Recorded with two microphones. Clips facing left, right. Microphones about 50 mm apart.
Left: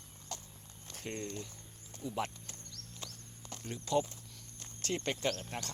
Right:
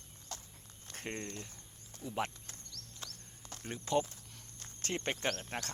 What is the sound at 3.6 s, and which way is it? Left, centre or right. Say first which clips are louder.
Speech: even; right.